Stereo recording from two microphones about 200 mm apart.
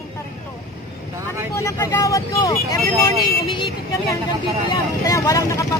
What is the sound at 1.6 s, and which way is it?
Speech, 15° left (ahead or behind).